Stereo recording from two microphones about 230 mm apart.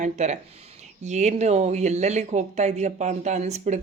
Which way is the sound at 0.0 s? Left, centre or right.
Right.